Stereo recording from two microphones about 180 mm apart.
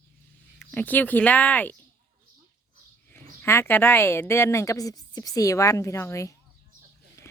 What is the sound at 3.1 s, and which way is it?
A woman's voice, 15° left (ahead or behind).